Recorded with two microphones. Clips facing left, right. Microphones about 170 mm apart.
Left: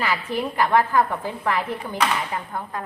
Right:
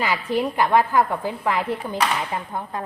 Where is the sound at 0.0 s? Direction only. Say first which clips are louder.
Right 2 dB; 15° right (ahead or behind).